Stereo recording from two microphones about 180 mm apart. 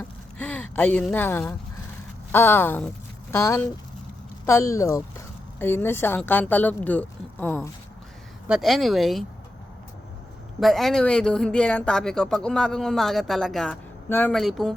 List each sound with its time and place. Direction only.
0.0 s a sound: 10° left (ahead or behind)
2.3 s speech: 10° left (ahead or behind)
8.4 s speech: centre (ahead or behind)
10.6 s speech: centre (ahead or behind)